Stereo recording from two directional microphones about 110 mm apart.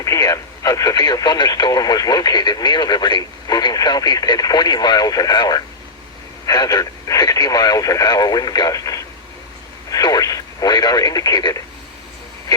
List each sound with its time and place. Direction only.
0.0 s speech: 30° left (ahead or behind)